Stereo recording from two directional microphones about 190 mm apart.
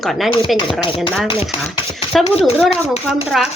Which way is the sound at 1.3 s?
25° left (ahead or behind).